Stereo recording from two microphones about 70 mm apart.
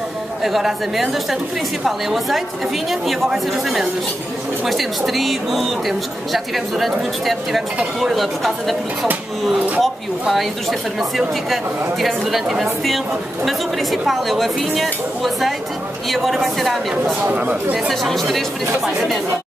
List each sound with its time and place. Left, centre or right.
0.4 s speech: centre
17.0 s speech: right
17.7 s speech: centre